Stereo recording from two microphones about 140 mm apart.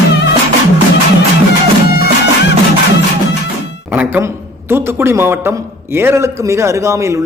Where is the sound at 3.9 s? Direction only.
15° right (ahead or behind).